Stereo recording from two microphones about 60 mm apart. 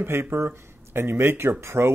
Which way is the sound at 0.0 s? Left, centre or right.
Right.